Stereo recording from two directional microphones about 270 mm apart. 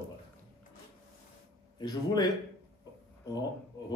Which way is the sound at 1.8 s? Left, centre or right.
Centre.